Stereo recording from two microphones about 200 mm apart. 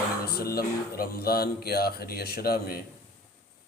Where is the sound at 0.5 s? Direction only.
50° left (ahead or behind).